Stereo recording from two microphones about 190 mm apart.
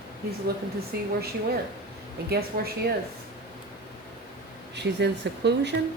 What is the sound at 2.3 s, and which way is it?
Speech, 55° right (ahead or behind).